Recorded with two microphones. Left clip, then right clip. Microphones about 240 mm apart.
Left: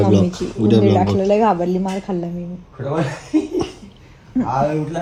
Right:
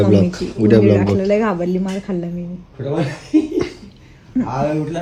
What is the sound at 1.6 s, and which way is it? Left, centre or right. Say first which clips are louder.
Speech: left 1 dB; centre.